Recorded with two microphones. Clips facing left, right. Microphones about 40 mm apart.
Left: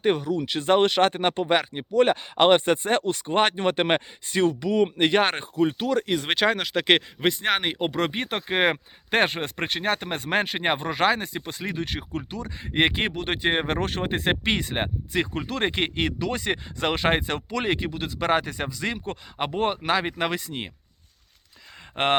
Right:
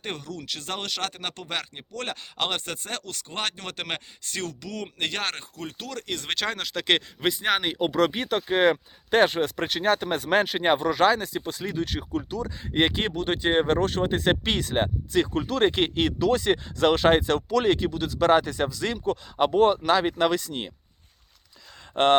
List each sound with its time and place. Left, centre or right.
0.0 s speech: centre
21.9 s speech: centre